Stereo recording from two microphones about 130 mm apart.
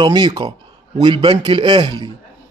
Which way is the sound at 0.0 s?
35° right (ahead or behind).